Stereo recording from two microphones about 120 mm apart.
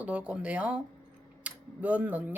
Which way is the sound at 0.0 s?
10° right (ahead or behind).